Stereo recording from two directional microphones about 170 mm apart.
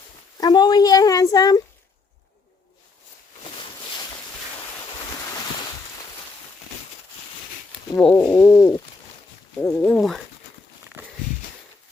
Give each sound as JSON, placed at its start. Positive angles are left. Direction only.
{"t": 0.3, "sound": "a woman's voice", "side_deg": 25}
{"t": 7.9, "sound": "bird", "side_deg": 5}
{"t": 9.6, "sound": "speech", "side_deg": 0}
{"t": 11.0, "sound": "a sound", "side_deg": -10}